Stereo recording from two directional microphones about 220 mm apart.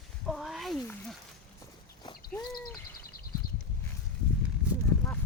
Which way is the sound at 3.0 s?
40° left (ahead or behind).